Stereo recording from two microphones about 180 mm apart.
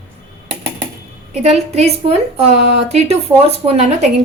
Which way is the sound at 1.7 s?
35° right (ahead or behind).